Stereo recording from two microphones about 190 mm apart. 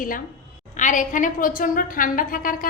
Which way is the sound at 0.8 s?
40° left (ahead or behind).